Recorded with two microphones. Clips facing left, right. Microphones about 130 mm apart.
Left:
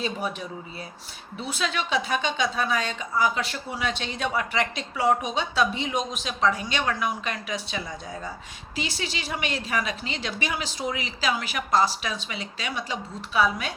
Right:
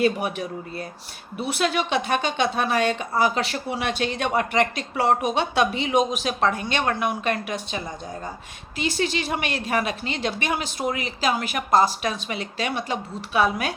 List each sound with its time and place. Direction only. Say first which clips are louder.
0.0 s speech: right 7 dB; 65° right (ahead or behind)
4.0 s a woman's voice: right 5 dB; 60° right (ahead or behind)